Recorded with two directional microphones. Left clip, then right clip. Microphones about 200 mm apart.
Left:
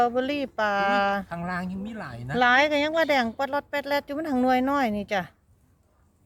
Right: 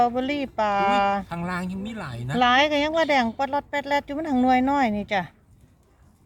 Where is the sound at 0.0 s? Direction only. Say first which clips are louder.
Right 1 dB; 10° left (ahead or behind).